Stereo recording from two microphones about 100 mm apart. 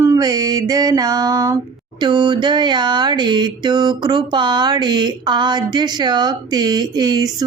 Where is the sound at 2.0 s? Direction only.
45° right (ahead or behind).